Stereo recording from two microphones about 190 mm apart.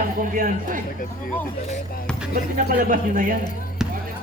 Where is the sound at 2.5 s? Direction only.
45° right (ahead or behind).